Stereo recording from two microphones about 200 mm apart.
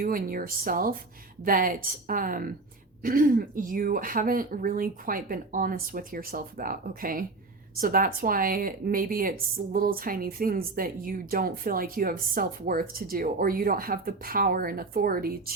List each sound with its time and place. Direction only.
0.0 s speech: 45° right (ahead or behind)